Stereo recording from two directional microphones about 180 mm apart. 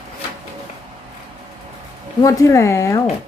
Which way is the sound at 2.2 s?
15° left (ahead or behind).